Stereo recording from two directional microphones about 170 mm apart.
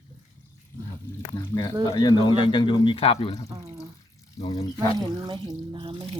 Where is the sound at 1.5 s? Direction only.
25° left (ahead or behind).